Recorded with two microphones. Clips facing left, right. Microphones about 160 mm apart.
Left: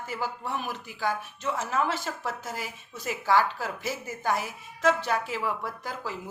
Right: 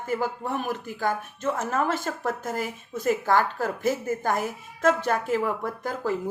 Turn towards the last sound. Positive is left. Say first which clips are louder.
# right 7 dB
turn(degrees=-50)  # may be behind; listen again after turning